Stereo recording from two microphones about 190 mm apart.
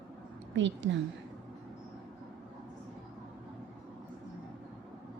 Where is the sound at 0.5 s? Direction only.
70° right (ahead or behind).